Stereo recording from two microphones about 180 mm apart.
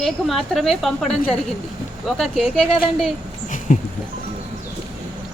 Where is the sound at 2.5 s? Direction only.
5° left (ahead or behind).